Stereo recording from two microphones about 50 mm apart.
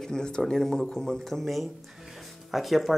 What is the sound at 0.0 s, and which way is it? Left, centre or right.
Speech, centre.